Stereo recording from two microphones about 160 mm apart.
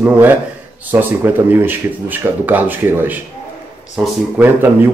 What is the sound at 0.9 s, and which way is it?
Speech, 10° right (ahead or behind).